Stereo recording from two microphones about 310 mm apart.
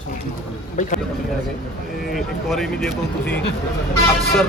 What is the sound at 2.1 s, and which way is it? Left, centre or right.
Speech, centre.